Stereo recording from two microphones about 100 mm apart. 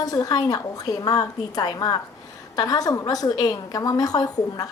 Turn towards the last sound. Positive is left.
turn(degrees=40)  # may be behind; listen again after turning